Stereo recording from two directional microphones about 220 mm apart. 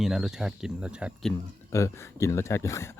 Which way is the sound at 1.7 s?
15° left (ahead or behind).